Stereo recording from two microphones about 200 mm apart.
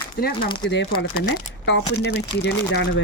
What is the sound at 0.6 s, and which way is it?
Speech, 60° left (ahead or behind).